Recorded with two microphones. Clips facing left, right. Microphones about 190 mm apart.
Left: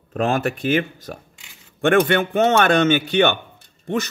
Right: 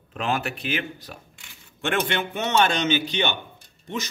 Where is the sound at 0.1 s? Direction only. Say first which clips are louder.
Left 6 dB; 45° left (ahead or behind).